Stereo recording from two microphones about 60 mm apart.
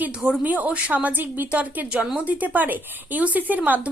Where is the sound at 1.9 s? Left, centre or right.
Centre.